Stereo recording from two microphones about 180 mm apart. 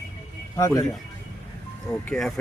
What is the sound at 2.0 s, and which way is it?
Speech, centre (ahead or behind).